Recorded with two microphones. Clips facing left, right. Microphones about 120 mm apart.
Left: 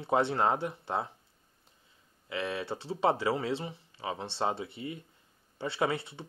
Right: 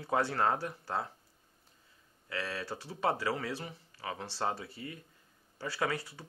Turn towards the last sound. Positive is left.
turn(degrees=25)  # may be behind; listen again after turning